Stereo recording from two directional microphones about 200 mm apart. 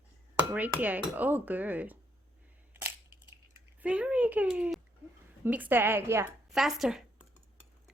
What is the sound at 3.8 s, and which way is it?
Speech, 5° right (ahead or behind).